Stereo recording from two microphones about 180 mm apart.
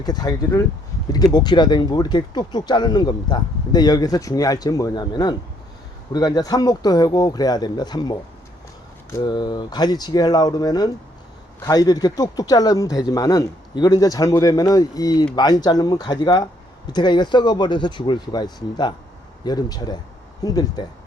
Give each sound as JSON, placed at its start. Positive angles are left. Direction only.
{"t": 0.0, "sound": "speech", "side_deg": 20}